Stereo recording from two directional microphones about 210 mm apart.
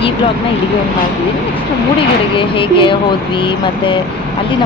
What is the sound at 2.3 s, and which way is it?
Speech, 25° left (ahead or behind).